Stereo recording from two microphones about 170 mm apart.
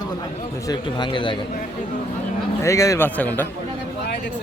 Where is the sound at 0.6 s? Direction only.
25° left (ahead or behind).